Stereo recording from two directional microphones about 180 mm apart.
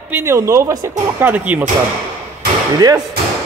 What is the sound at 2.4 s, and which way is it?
Slam, 60° right (ahead or behind).